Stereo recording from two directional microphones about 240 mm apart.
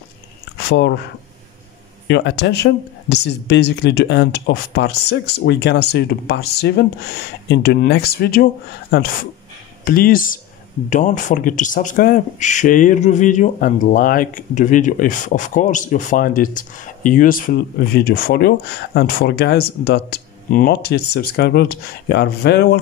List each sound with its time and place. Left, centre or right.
0.6 s speech: left
2.0 s speech: left